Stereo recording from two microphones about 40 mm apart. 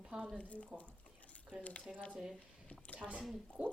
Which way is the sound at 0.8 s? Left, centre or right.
Left.